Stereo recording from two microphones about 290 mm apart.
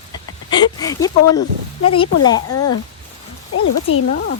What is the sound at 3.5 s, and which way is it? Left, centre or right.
Speech, left.